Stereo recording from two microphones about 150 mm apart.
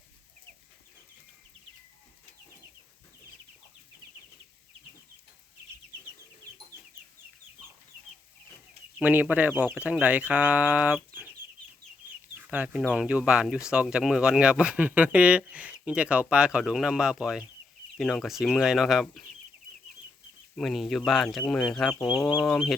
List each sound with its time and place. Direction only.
9.0 s speech: 10° right (ahead or behind)
12.5 s speech: 5° right (ahead or behind)
20.6 s speech: centre (ahead or behind)
22.2 s speech: 20° left (ahead or behind)
22.4 s speech: centre (ahead or behind)